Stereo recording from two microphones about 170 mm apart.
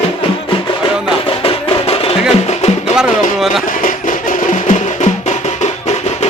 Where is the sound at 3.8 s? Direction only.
50° left (ahead or behind).